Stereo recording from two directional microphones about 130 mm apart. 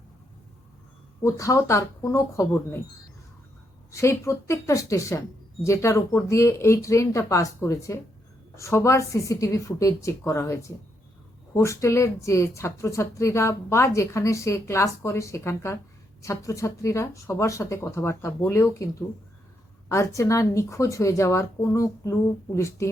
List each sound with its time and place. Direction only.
1.2 s a woman's voice: 25° left (ahead or behind)
3.9 s a woman's voice: 20° left (ahead or behind)